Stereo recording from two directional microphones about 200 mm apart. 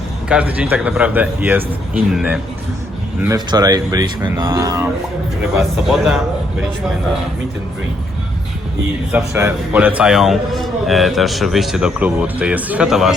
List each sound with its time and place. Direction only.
0.3 s a man's voice: 5° right (ahead or behind)
3.2 s speech: 15° right (ahead or behind)
5.5 s a man's voice: centre (ahead or behind)
9.1 s a man's voice: 5° right (ahead or behind)